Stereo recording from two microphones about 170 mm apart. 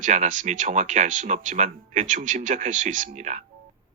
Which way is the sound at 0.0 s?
45° right (ahead or behind).